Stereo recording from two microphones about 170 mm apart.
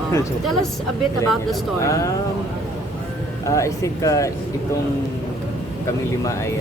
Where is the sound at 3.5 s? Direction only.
20° left (ahead or behind).